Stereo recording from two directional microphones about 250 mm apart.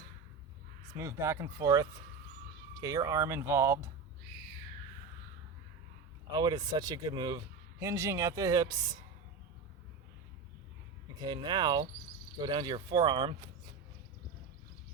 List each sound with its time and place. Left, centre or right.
0.9 s speech: centre
6.3 s speech: centre
11.2 s speech: centre